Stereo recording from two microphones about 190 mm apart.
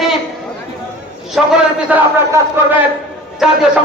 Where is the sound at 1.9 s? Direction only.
15° right (ahead or behind).